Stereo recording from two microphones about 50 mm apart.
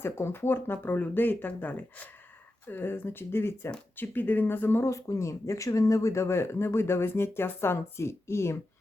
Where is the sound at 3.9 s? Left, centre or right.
Left.